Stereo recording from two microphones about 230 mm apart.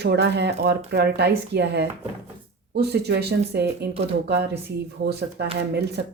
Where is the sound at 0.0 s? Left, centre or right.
Right.